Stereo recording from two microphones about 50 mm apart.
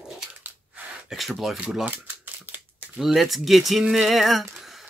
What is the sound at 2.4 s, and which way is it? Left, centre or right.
Crumpling, right.